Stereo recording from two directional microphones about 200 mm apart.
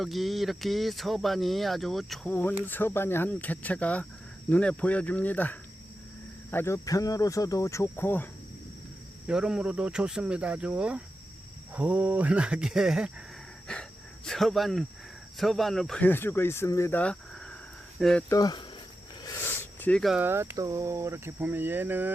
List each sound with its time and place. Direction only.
0.0 s speech: centre (ahead or behind)
9.2 s speech: 5° right (ahead or behind)
14.3 s speech: centre (ahead or behind)
18.3 s speech: 20° left (ahead or behind); by 22.1 s 10° right (ahead or behind)